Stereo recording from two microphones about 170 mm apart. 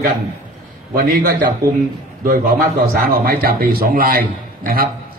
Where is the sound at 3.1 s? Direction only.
60° right (ahead or behind).